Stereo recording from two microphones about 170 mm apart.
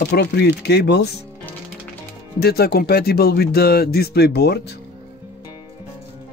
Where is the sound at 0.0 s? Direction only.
75° left (ahead or behind).